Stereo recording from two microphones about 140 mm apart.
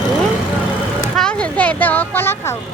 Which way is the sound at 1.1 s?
5° left (ahead or behind).